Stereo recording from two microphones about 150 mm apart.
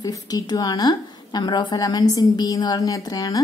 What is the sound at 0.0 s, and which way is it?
A woman's voice, 25° left (ahead or behind).